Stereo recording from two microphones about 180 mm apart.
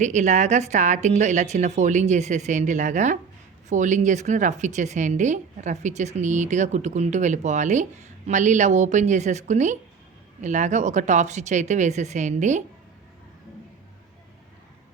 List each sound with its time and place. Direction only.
0.0 s a woman's voice: 40° right (ahead or behind)